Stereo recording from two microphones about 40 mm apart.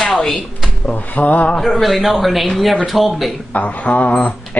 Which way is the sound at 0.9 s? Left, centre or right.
Left.